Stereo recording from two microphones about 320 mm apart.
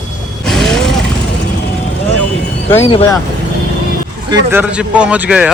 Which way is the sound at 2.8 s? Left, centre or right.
Centre.